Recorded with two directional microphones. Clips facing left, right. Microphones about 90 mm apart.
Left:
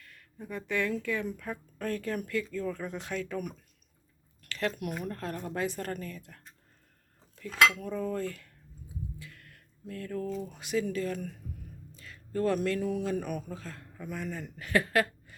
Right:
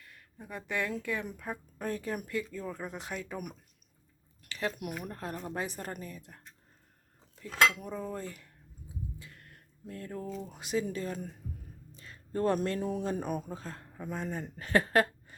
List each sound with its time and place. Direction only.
0.0 s speech: 20° right (ahead or behind)
7.7 s speech: 20° right (ahead or behind)
9.1 s music: 25° right (ahead or behind)
10.4 s speech: 20° right (ahead or behind)